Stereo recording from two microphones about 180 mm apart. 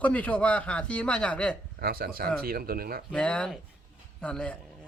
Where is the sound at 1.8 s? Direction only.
55° right (ahead or behind).